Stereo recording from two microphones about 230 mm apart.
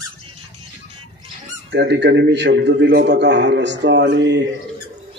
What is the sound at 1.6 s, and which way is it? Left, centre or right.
A man's voice, right.